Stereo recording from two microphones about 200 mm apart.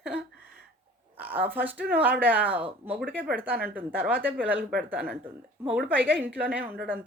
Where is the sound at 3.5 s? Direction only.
50° right (ahead or behind).